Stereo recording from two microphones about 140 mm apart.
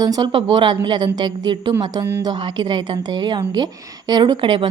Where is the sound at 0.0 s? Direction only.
30° right (ahead or behind).